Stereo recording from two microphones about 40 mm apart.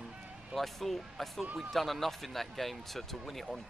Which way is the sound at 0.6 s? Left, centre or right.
Centre.